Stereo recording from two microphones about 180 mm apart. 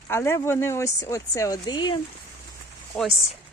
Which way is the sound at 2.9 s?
Centre (ahead or behind).